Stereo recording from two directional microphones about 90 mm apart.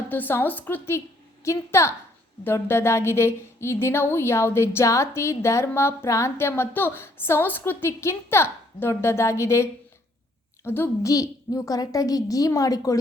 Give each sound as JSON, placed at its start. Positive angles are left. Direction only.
{"t": 0.1, "sound": "a woman's voice", "side_deg": 20}